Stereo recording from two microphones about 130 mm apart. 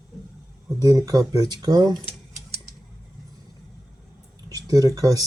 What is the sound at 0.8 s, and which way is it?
Speech, 25° right (ahead or behind).